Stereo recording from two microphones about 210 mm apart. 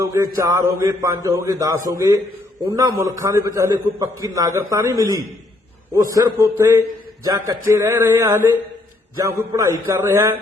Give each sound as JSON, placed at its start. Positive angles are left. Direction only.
{"t": 0.1, "sound": "a man's voice", "side_deg": -15}